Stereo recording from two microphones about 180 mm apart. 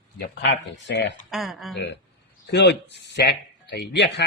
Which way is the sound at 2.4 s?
70° left (ahead or behind).